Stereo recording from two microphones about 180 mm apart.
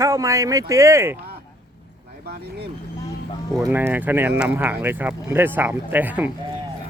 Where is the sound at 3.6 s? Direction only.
10° right (ahead or behind).